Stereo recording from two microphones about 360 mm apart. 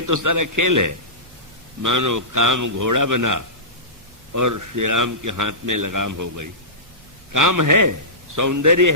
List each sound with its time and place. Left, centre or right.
0.0 s a man's voice: right